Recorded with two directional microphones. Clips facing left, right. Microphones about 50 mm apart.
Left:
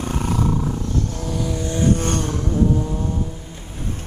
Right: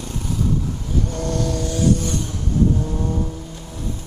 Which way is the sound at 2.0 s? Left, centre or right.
Left.